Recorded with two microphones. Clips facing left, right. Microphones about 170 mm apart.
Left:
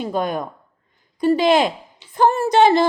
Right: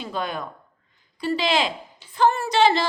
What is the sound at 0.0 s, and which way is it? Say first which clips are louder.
A woman's voice: left 6 dB; 45° left (ahead or behind).